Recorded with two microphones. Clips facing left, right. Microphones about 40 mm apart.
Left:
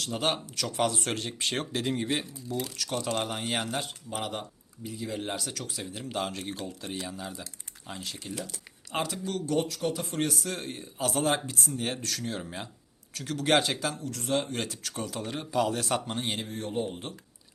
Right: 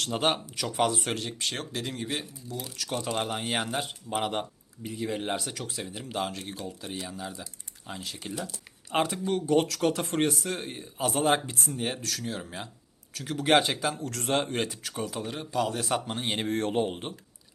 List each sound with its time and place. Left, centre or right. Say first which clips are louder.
0.3 s speech: even; centre
2.7 s speech: right 3 dB; centre
4.3 s speech: right 4 dB; right
5.1 s speech: even; centre
8.9 s speech: right 4 dB; right
9.8 s a man's voice: right 4 dB; right
10.2 s speech: right 3 dB; right
10.5 s speech: right 2 dB; centre
11.1 s speech: right 3 dB; right
12.0 s speech: even; centre
14.0 s a man's voice: right 2 dB; right
14.5 s speech: right 3 dB; centre
14.8 s speech: right 1 dB; centre
16.4 s speech: right 5 dB; right